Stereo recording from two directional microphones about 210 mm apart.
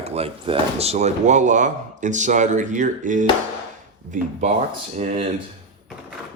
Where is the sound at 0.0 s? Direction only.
30° right (ahead or behind).